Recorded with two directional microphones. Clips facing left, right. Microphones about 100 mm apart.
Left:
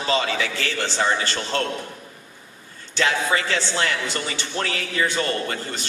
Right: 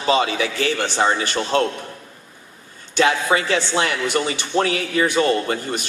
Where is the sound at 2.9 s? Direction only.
20° right (ahead or behind).